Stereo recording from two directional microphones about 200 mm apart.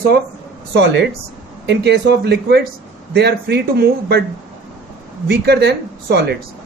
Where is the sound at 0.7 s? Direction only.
60° right (ahead or behind).